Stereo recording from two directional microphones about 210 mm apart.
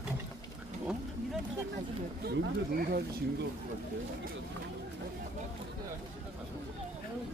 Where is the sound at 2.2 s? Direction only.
45° right (ahead or behind).